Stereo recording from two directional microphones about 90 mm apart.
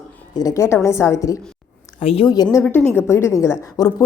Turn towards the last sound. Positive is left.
turn(degrees=45)  # may be behind; listen again after turning